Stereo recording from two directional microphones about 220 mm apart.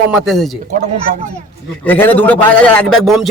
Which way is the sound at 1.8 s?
10° left (ahead or behind).